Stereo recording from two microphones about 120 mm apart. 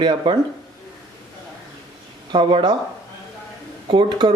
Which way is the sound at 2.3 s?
40° right (ahead or behind).